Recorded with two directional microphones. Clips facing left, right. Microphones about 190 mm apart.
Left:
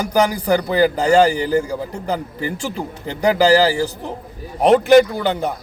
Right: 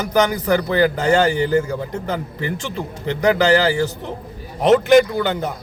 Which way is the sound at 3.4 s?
35° left (ahead or behind).